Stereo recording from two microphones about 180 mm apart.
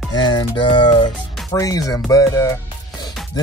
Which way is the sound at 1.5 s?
20° left (ahead or behind).